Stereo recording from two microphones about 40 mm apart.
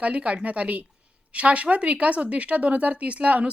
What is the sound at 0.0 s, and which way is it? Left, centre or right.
A woman's voice, right.